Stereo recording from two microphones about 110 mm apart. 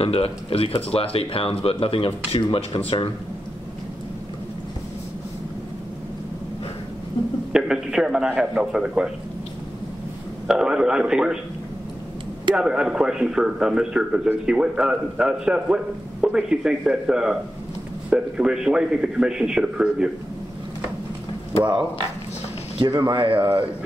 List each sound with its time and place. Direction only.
0.0 s speech: 60° left (ahead or behind)
7.2 s a sound: 45° left (ahead or behind)
7.5 s a sound: 5° right (ahead or behind)
8.4 s a man's voice: 5° right (ahead or behind)
10.4 s a man's voice: 5° right (ahead or behind)
12.5 s a man's voice: 10° right (ahead or behind)
22.8 s speech: 40° right (ahead or behind)